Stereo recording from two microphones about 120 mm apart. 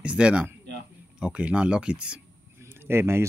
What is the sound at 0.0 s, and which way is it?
Speech, 10° right (ahead or behind).